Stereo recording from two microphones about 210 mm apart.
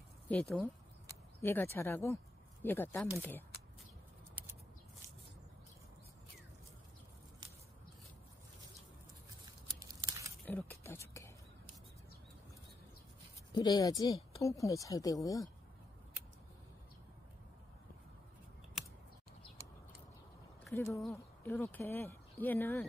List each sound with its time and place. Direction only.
0.3 s speech: 5° left (ahead or behind)
9.8 s scissors: 15° right (ahead or behind)
10.4 s a sound: 10° left (ahead or behind)
13.5 s speech: 20° left (ahead or behind)
20.7 s speech: 15° left (ahead or behind)